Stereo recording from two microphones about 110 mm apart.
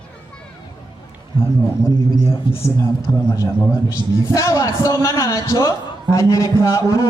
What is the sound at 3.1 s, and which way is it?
A man's voice, 35° left (ahead or behind).